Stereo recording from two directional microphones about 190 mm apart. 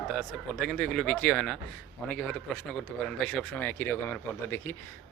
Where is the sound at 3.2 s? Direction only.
5° left (ahead or behind).